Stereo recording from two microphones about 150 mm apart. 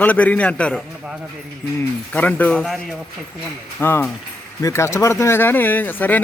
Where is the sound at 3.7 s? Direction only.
15° left (ahead or behind).